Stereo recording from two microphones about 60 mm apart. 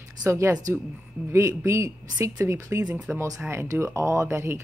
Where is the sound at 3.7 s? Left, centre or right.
Right.